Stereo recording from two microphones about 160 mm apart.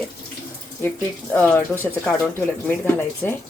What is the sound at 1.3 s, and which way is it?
Speech, 15° left (ahead or behind).